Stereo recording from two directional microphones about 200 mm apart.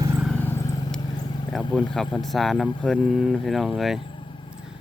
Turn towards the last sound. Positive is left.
turn(degrees=0)  # may be behind; listen again after turning